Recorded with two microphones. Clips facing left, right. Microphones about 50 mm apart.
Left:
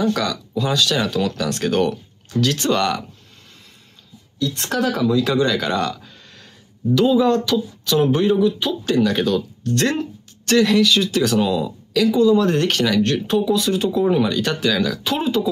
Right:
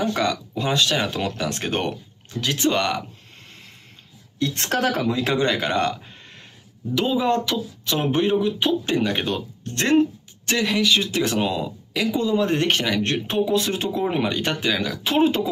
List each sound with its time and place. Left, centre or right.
0.0 s speech: right
4.4 s speech: right
15.0 s speech: right